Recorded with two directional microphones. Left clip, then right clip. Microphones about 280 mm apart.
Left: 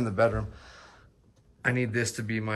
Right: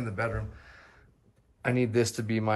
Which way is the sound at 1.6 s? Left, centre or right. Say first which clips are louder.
Right 1 dB; centre.